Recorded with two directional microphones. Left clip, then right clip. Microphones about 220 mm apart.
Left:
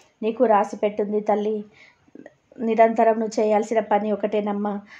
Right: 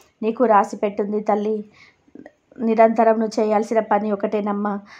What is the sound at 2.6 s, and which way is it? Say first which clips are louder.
A woman's voice: right 2 dB; 20° right (ahead or behind).